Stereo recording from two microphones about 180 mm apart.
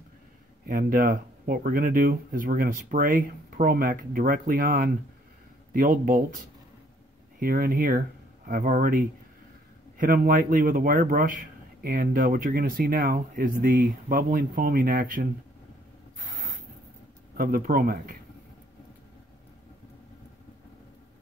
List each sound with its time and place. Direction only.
0.7 s a man's voice: 50° right (ahead or behind)
17.4 s speech: 55° right (ahead or behind)